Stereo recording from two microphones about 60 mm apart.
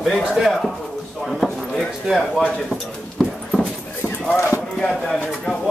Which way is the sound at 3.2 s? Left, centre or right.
Centre.